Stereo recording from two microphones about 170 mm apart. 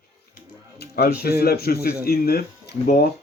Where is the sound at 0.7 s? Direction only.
65° left (ahead or behind).